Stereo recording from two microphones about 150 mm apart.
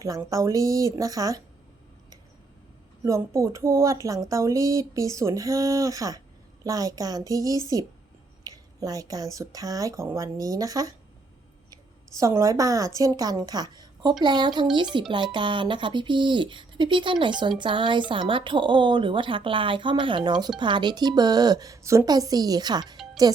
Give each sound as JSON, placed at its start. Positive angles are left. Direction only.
{"t": 0.0, "sound": "speech", "side_deg": -20}
{"t": 3.0, "sound": "a woman's voice", "side_deg": -20}